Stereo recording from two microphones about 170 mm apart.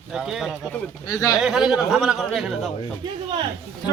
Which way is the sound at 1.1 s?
20° left (ahead or behind).